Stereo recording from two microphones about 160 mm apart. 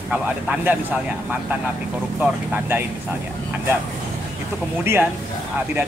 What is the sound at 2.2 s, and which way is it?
Speech, 10° right (ahead or behind).